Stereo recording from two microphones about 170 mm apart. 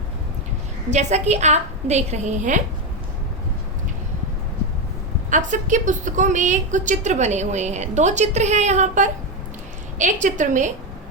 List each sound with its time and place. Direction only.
0.9 s a woman's voice: 40° right (ahead or behind)
5.3 s a woman's voice: 45° right (ahead or behind)